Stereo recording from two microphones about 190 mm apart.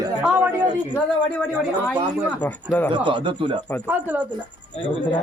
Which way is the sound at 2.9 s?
25° right (ahead or behind).